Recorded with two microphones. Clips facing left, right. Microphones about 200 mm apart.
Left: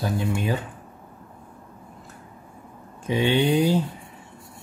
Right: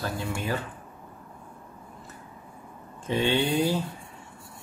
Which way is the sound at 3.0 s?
15° left (ahead or behind).